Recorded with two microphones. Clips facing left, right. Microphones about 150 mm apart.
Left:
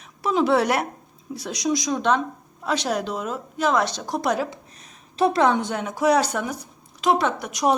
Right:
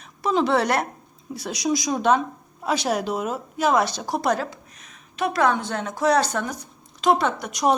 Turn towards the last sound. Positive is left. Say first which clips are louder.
# even
turn(degrees=0)  # may be behind; listen again after turning